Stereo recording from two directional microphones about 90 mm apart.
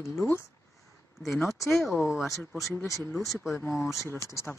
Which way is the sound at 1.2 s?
Centre (ahead or behind).